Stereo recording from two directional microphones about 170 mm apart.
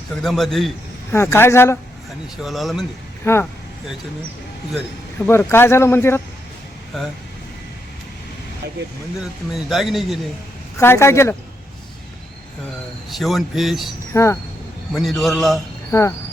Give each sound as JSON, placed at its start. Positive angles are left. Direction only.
{"t": 0.2, "sound": "speech", "side_deg": 0}
{"t": 1.1, "sound": "speech", "side_deg": 15}
{"t": 2.4, "sound": "speech", "side_deg": 0}
{"t": 3.3, "sound": "speech", "side_deg": 15}
{"t": 5.2, "sound": "speech", "side_deg": 15}
{"t": 6.9, "sound": "speech", "side_deg": 0}
{"t": 9.2, "sound": "speech", "side_deg": 0}
{"t": 10.8, "sound": "speech", "side_deg": 15}
{"t": 13.1, "sound": "speech", "side_deg": 0}
{"t": 14.1, "sound": "speech", "side_deg": 15}
{"t": 14.9, "sound": "speech", "side_deg": 0}
{"t": 15.9, "sound": "speech", "side_deg": 15}